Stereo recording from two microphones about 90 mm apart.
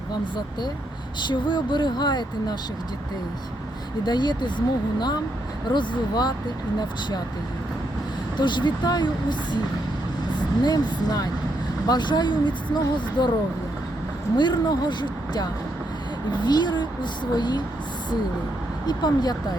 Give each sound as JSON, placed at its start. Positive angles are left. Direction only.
{"t": 1.3, "sound": "speech", "side_deg": 60}
{"t": 4.0, "sound": "speech", "side_deg": 55}
{"t": 8.4, "sound": "speech", "side_deg": 60}
{"t": 10.6, "sound": "speech", "side_deg": 45}
{"t": 14.3, "sound": "speech", "side_deg": 55}
{"t": 18.9, "sound": "speech", "side_deg": 50}